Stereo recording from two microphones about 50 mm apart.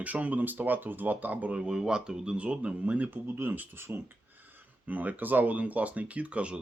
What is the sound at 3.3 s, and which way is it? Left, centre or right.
Speech, right.